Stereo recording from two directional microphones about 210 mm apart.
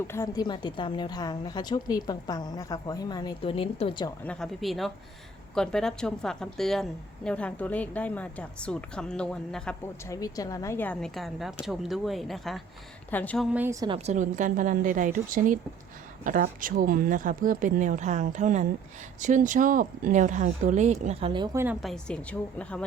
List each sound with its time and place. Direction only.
0.1 s a woman's voice: 15° left (ahead or behind)
4.2 s a woman's voice: 5° left (ahead or behind)
10.1 s a woman's voice: 15° left (ahead or behind); by 21.8 s 10° right (ahead or behind)
21.8 s a woman's voice: centre (ahead or behind)